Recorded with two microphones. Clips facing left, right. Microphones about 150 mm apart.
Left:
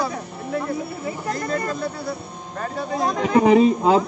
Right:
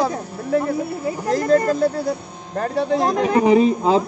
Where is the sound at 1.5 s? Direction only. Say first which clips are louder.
Right 12 dB; 40° right (ahead or behind).